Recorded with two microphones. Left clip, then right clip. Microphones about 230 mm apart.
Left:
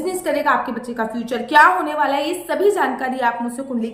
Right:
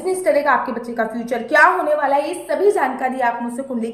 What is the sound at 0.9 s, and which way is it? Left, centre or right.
A woman's voice, centre.